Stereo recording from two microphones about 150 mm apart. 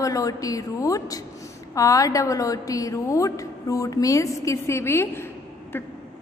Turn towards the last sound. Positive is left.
turn(degrees=15)  # may be behind; listen again after turning